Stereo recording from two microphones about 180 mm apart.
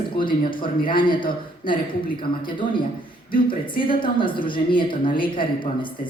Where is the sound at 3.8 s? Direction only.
30° left (ahead or behind).